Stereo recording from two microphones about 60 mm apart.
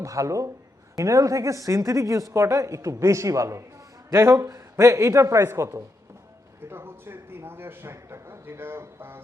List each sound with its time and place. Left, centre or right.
0.0 s a woman's voice: right
4.1 s speech: right
4.4 s a woman's voice: right
6.6 s a man's voice: right